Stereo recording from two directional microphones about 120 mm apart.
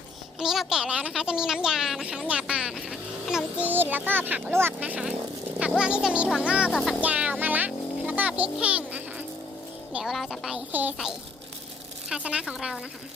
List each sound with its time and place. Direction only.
0.3 s speech: centre (ahead or behind)
3.7 s a child's voice: 15° right (ahead or behind)
7.0 s a sound: 10° right (ahead or behind)
9.9 s speech: centre (ahead or behind)
10.7 s a child's voice: 15° right (ahead or behind)
12.0 s a child's voice: 5° right (ahead or behind)